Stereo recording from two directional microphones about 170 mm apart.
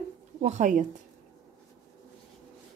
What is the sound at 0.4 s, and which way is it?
Speech, 45° right (ahead or behind).